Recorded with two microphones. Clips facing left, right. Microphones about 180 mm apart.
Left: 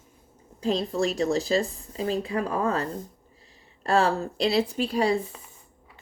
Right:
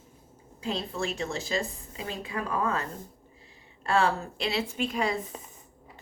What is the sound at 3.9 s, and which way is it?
A woman's voice, 40° left (ahead or behind).